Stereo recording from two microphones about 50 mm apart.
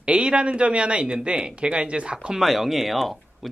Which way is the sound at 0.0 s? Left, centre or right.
Right.